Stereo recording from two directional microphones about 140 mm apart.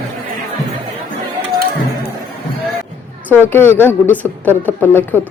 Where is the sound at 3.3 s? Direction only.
15° left (ahead or behind).